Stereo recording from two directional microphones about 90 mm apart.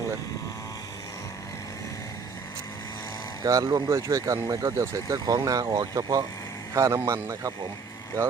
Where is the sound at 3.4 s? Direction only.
45° right (ahead or behind).